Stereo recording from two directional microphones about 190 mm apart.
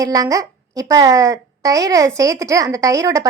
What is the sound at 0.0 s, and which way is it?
A woman's voice, 20° right (ahead or behind).